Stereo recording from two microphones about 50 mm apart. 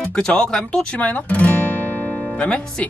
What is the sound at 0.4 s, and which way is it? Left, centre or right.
Speech, centre.